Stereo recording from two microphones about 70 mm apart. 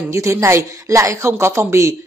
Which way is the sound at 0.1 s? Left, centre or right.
Right.